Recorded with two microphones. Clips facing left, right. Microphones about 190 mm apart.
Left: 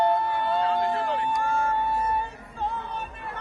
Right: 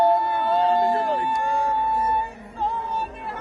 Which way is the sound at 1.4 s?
15° right (ahead or behind).